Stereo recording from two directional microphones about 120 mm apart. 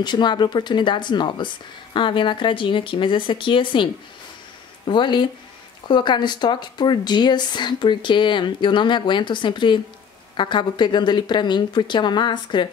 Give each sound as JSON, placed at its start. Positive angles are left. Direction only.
{"t": 0.0, "sound": "speech", "side_deg": 40}